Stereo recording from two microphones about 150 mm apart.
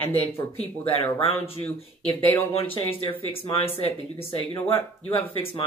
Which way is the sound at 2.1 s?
15° left (ahead or behind).